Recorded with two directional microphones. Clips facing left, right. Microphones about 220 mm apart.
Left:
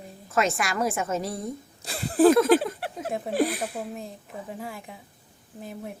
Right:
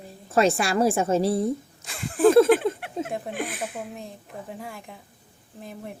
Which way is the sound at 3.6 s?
5° left (ahead or behind).